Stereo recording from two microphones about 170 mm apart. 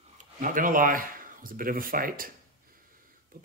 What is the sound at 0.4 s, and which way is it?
Speech, 50° right (ahead or behind).